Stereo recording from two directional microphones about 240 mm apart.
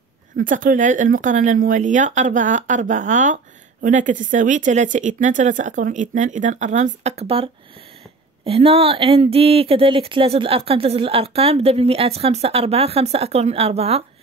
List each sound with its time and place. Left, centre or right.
0.4 s speech: right
8.5 s speech: right